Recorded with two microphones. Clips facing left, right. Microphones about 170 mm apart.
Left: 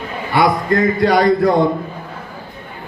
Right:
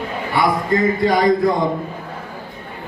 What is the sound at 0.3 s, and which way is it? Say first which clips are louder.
A man's voice: left 3 dB; 80° left.